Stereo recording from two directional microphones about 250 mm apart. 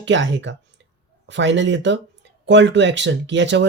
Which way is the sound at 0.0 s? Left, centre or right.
Right.